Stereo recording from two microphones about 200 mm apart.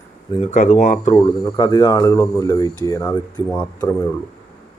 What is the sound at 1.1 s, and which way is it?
Speech, 20° left (ahead or behind).